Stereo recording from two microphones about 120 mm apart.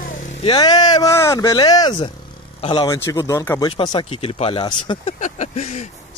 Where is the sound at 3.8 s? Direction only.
40° left (ahead or behind).